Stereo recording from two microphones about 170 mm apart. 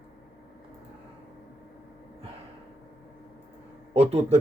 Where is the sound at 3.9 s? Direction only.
35° right (ahead or behind).